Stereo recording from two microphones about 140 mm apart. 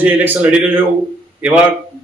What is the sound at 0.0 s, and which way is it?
Speech, 10° right (ahead or behind).